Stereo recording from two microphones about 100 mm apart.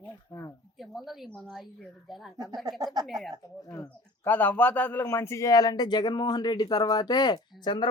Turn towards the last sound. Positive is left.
turn(degrees=45)  # may be behind; listen again after turning